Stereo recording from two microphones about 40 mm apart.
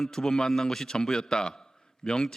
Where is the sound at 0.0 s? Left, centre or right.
Centre.